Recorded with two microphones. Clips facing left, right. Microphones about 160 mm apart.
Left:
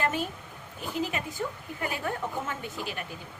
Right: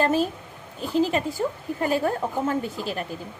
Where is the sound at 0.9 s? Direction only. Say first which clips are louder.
Right 9 dB; 35° right (ahead or behind).